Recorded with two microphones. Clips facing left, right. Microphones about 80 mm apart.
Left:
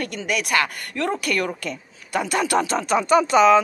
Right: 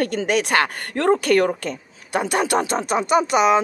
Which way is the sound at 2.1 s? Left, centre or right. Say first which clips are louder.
Right 1 dB; right.